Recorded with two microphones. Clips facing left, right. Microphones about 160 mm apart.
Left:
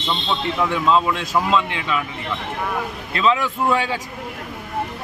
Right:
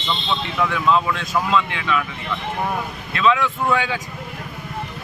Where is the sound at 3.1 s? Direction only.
30° left (ahead or behind).